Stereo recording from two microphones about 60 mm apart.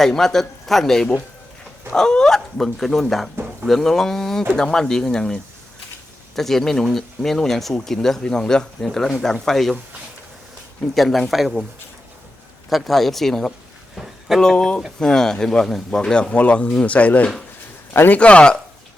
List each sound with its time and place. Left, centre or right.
0.0 s speech: centre
10.9 s speech: centre
12.7 s speech: centre
13.9 s a sound: centre
14.4 s speech: centre